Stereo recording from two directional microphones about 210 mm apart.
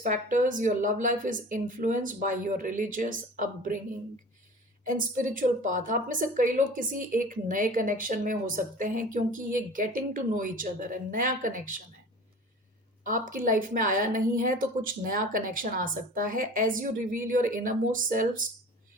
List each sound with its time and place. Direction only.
0.0 s a woman's voice: 35° right (ahead or behind)
4.9 s a woman's voice: 40° right (ahead or behind)
13.1 s a woman's voice: 40° right (ahead or behind)